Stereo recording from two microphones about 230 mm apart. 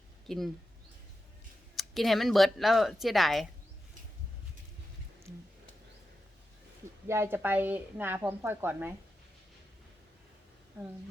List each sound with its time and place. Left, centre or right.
0.3 s speech: centre
1.7 s speech: centre
5.3 s a sound: left
7.1 s a woman's voice: centre